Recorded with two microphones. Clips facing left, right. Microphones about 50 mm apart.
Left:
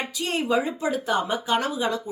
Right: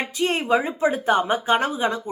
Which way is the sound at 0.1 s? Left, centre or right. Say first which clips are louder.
Right 4 dB; right.